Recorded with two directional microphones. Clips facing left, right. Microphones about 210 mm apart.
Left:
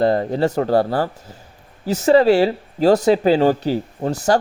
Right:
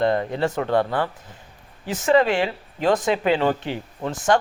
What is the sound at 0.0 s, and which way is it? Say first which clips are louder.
Speech: left 4 dB; 35° left (ahead or behind).